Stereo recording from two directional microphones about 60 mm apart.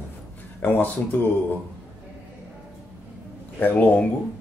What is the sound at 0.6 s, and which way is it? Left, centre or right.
Speech, left.